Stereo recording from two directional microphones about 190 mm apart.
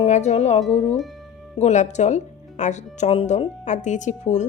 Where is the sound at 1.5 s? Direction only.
40° left (ahead or behind).